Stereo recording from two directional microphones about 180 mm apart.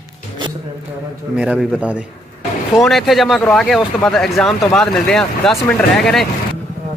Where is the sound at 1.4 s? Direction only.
5° right (ahead or behind).